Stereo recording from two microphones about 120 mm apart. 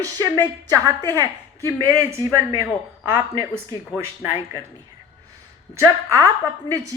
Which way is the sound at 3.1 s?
15° right (ahead or behind).